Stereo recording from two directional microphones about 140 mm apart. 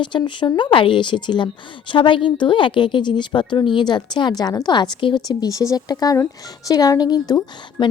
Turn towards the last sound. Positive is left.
turn(degrees=30)  # may be behind; listen again after turning